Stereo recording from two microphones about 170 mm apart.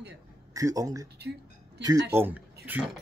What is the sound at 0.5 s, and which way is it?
Speech, 20° right (ahead or behind).